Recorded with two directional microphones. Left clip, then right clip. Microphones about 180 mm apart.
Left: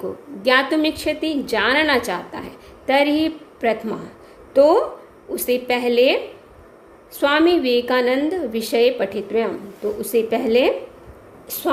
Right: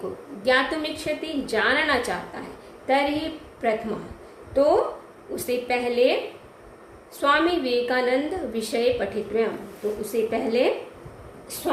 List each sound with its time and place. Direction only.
0.4 s a woman's voice: 50° left (ahead or behind)
7.2 s a woman's voice: 50° left (ahead or behind)